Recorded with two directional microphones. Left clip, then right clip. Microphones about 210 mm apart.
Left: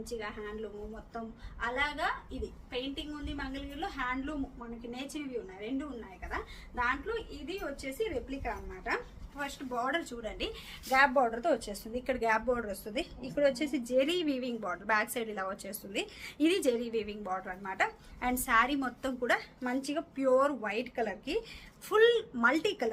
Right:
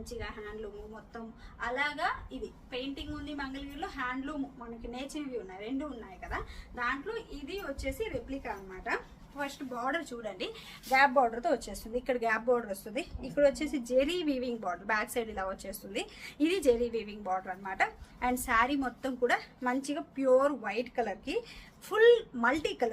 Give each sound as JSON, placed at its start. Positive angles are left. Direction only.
{"t": 0.1, "sound": "a woman's voice", "side_deg": 0}
{"t": 1.6, "sound": "a woman's voice", "side_deg": 5}
{"t": 6.2, "sound": "a woman's voice", "side_deg": 0}